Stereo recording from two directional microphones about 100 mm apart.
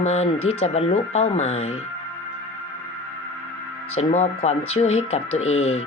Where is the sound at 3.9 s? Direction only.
90° left.